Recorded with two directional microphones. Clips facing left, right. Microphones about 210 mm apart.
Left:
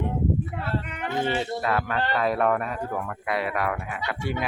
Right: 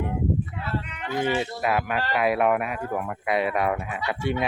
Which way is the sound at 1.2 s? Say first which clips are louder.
Right 2 dB; 15° right (ahead or behind).